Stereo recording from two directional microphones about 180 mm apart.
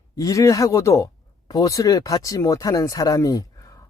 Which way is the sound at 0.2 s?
20° left (ahead or behind).